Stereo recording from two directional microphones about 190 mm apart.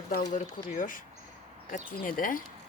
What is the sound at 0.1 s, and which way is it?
Speech, 40° left (ahead or behind).